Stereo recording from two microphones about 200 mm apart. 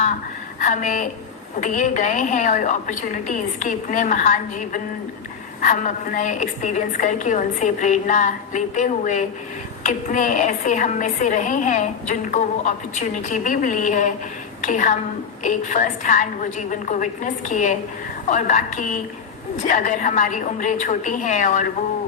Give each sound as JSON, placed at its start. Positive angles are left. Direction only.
{"t": 0.6, "sound": "a woman's voice", "side_deg": 40}